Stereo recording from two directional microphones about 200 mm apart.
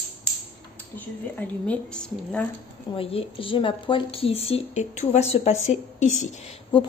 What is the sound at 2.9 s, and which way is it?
A woman's voice, 30° left (ahead or behind).